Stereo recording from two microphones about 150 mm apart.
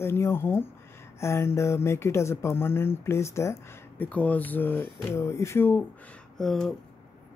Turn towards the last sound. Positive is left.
turn(degrees=0)  # may be behind; listen again after turning